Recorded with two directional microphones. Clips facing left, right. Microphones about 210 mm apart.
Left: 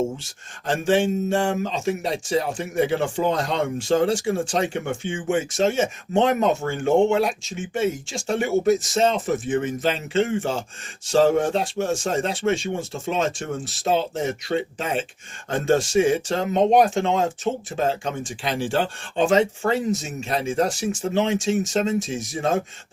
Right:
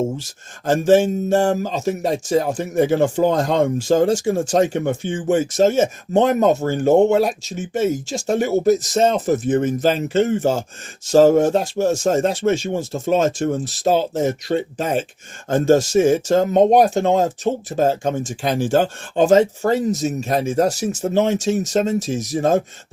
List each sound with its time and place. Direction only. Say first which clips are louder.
0.2 s speech: right 7 dB; 40° right (ahead or behind)